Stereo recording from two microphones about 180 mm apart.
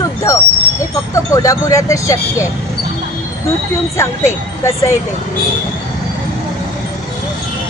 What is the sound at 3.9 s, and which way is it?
Speech, 15° left (ahead or behind).